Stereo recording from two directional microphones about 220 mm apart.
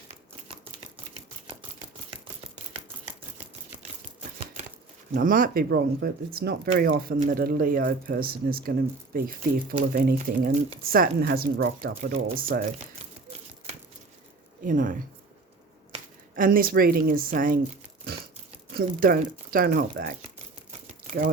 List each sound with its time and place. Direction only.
5.1 s speech: 40° right (ahead or behind)
14.6 s speech: 35° right (ahead or behind)
18.7 s speech: 40° right (ahead or behind)
21.2 s speech: 40° right (ahead or behind)